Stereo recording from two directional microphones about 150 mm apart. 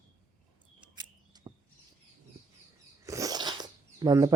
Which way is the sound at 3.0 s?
20° right (ahead or behind).